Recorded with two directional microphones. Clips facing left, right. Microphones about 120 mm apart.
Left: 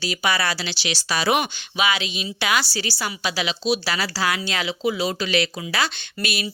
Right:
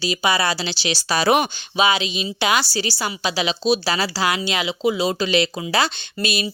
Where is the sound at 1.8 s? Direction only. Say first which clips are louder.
Right 4 dB; 25° right (ahead or behind).